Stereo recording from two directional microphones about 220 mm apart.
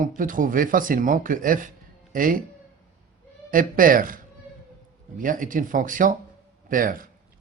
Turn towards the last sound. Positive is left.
turn(degrees=-40)  # may be behind; listen again after turning